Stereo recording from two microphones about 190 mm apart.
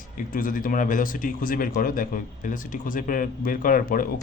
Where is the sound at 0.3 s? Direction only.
45° left (ahead or behind).